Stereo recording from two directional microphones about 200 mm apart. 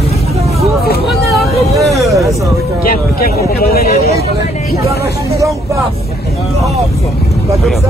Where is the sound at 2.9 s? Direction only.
50° left (ahead or behind).